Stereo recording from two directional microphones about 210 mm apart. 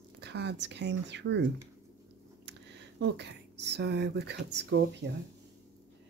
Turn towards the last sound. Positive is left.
turn(degrees=-55)  # may be behind; listen again after turning